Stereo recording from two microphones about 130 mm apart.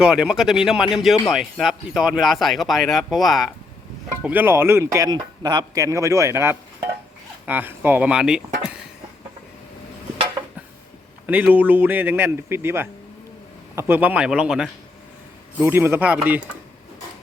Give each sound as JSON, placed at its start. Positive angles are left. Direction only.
{"t": 0.0, "sound": "speech", "side_deg": -5}
{"t": 4.2, "sound": "a man's voice", "side_deg": -10}
{"t": 11.3, "sound": "a man's voice", "side_deg": -15}
{"t": 15.6, "sound": "a man's voice", "side_deg": -20}